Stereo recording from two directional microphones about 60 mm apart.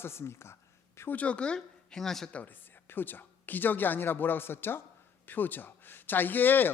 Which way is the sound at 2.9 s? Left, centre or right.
Left.